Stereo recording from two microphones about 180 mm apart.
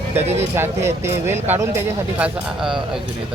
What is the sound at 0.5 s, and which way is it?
A man's voice, 15° right (ahead or behind).